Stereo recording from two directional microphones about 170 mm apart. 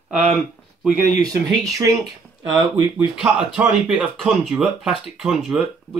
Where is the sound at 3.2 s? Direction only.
5° right (ahead or behind).